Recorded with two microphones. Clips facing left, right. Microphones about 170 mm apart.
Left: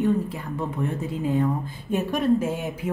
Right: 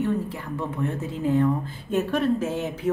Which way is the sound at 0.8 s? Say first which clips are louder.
Right 1 dB; 15° left (ahead or behind).